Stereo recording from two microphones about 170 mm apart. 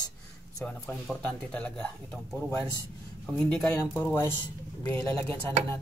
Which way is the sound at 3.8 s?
15° left (ahead or behind).